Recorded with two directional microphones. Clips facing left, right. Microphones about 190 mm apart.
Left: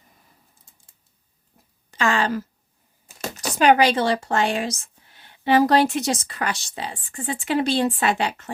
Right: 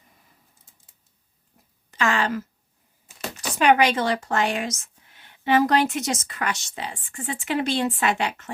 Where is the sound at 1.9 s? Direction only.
30° left (ahead or behind).